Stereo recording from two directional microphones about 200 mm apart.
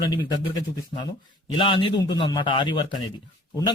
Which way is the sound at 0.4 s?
20° left (ahead or behind).